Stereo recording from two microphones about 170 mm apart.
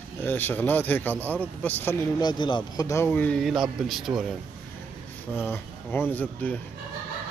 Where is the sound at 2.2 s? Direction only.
25° left (ahead or behind); by 4.2 s centre (ahead or behind).